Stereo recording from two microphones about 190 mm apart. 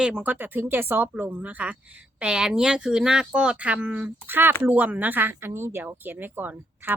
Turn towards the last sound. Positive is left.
turn(degrees=-10)  # may be behind; listen again after turning